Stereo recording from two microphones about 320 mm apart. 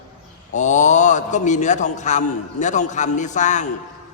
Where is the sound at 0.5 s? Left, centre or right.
Left.